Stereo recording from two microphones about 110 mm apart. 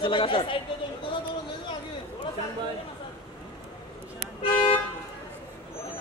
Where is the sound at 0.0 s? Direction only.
50° left (ahead or behind).